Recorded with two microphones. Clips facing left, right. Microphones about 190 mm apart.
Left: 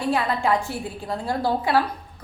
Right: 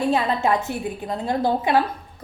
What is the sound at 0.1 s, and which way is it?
A woman's voice, 20° right (ahead or behind).